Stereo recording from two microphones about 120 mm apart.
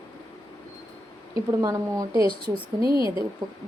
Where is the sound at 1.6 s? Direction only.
30° right (ahead or behind).